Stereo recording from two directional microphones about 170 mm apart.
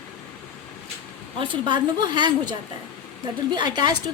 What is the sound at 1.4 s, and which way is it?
A woman's voice, 25° right (ahead or behind).